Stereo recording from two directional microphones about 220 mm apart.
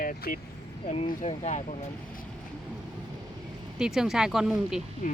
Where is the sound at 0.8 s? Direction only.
30° left (ahead or behind).